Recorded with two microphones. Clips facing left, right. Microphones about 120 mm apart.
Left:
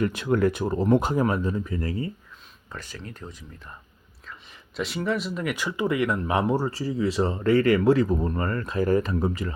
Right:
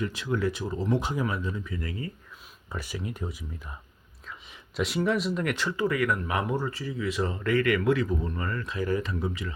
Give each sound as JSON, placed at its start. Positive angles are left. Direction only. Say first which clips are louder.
{"t": 0.0, "sound": "speech", "louder": "left 6 dB", "side_deg": 55}
{"t": 2.7, "sound": "speech", "louder": "right 4 dB", "side_deg": -10}
{"t": 4.8, "sound": "speech", "louder": "right 1 dB", "side_deg": 0}